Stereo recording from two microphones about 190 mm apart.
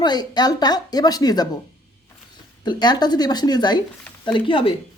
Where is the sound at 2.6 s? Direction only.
25° left (ahead or behind).